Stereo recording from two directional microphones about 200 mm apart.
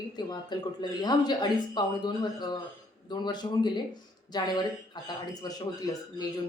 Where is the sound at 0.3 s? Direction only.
20° left (ahead or behind).